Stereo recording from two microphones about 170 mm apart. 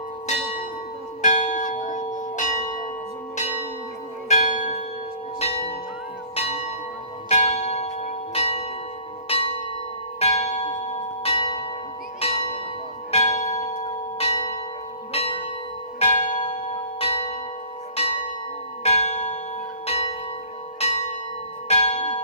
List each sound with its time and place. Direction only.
0.3 s church bell: 40° left (ahead or behind)
4.3 s church bell: 45° left (ahead or behind)